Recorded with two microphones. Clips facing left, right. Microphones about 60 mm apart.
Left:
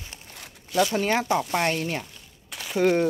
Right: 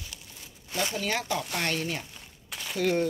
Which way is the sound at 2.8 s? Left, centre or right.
Left.